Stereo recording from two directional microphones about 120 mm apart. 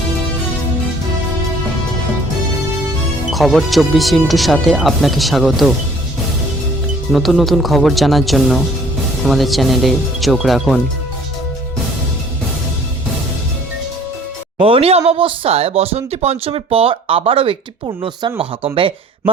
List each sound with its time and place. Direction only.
3.2 s speech: centre (ahead or behind)
7.1 s speech: centre (ahead or behind)
14.6 s speech: 50° right (ahead or behind)